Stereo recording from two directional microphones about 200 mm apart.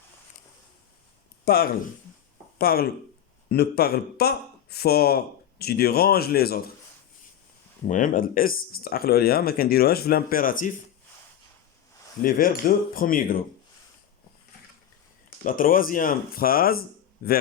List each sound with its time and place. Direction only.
1.5 s speech: 50° left (ahead or behind)
7.9 s speech: 40° left (ahead or behind)
12.2 s speech: 45° left (ahead or behind)
15.4 s speech: 45° left (ahead or behind)